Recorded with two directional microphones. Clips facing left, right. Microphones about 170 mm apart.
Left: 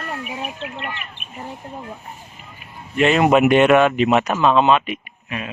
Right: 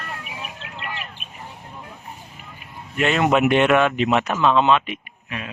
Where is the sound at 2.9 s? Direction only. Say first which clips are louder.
Left 4 dB; centre (ahead or behind).